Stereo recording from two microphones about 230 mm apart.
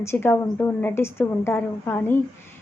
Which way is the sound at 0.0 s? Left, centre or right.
Centre.